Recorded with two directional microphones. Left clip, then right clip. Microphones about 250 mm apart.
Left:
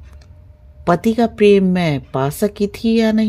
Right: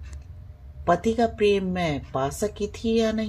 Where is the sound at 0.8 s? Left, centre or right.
Left.